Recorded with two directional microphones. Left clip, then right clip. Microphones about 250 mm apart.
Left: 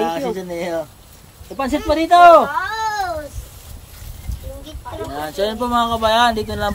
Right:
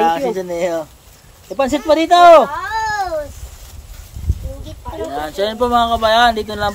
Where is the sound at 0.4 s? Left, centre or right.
Centre.